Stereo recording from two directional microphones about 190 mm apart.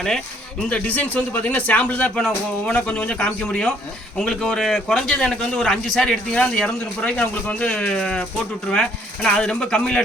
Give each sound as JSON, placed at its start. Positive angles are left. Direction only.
{"t": 0.7, "sound": "a man's voice", "side_deg": 10}